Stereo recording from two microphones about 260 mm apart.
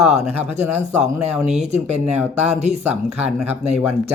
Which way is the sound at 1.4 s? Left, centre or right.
Right.